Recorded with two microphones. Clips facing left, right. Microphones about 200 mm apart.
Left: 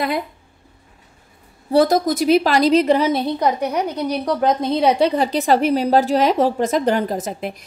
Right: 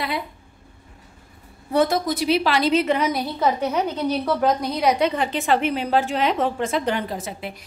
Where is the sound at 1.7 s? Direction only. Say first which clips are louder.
Left 5 dB; 40° left (ahead or behind).